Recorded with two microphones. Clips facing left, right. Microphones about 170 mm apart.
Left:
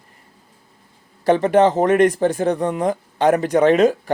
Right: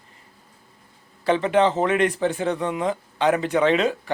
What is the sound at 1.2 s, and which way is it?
Speech, 45° left (ahead or behind).